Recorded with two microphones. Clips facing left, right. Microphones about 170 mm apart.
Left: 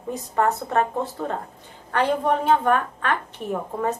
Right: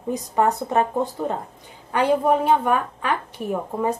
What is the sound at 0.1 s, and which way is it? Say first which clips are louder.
A woman's voice: right 2 dB; 15° right (ahead or behind).